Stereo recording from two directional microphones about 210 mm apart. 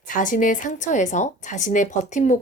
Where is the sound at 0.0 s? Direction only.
40° left (ahead or behind).